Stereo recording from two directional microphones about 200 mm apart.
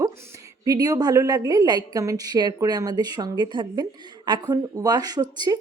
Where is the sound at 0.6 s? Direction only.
20° right (ahead or behind).